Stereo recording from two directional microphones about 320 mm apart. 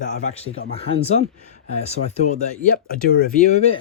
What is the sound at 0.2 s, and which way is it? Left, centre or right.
Speech, centre.